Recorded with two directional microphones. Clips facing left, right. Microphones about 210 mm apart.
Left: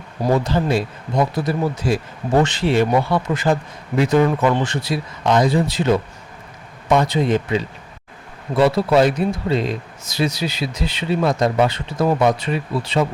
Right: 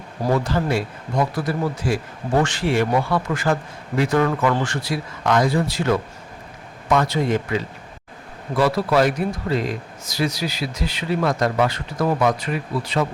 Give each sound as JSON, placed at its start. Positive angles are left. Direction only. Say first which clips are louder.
{"t": 0.3, "sound": "speech", "louder": "left 2 dB", "side_deg": 20}